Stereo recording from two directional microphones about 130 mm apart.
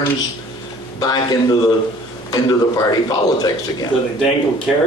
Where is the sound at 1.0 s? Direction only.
30° left (ahead or behind).